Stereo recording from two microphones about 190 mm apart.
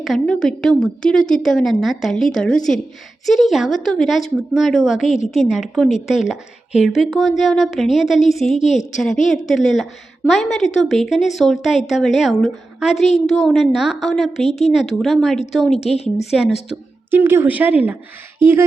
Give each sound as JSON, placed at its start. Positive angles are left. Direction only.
{"t": 0.0, "sound": "a woman's voice", "side_deg": 0}
{"t": 8.4, "sound": "speech", "side_deg": 35}
{"t": 9.5, "sound": "a woman's voice", "side_deg": 0}
{"t": 15.8, "sound": "speech", "side_deg": 35}
{"t": 16.3, "sound": "a woman's voice", "side_deg": -5}